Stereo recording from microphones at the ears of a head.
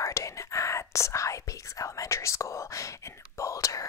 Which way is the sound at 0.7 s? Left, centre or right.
Left.